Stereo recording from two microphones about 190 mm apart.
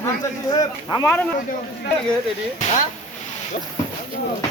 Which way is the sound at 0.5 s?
20° left (ahead or behind).